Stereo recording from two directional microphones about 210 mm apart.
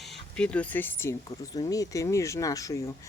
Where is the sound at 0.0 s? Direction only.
Centre (ahead or behind).